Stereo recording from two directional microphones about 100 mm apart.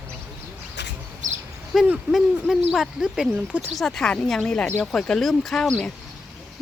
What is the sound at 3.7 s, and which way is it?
Speech, 5° left (ahead or behind).